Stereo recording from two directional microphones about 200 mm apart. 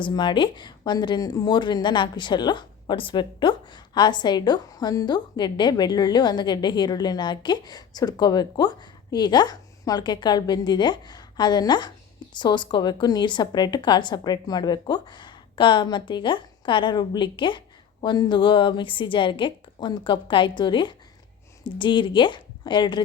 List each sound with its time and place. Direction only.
0.0 s a woman's voice: 25° left (ahead or behind)